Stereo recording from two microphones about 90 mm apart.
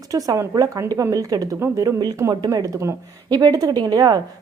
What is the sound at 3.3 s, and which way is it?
Speech, 45° right (ahead or behind).